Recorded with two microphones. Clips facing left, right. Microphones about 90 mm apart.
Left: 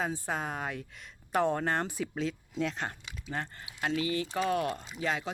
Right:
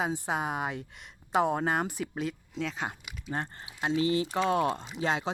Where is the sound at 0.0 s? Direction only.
15° right (ahead or behind); by 2.8 s centre (ahead or behind).